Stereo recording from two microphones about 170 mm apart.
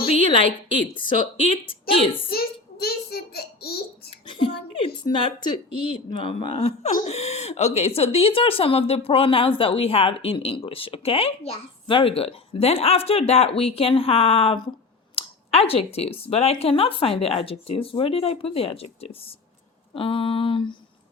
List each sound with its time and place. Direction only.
0.1 s a sound: 35° left (ahead or behind)
1.4 s speech: 35° left (ahead or behind)
2.3 s a child's voice: 65° left (ahead or behind)
4.3 s speech: 30° left (ahead or behind)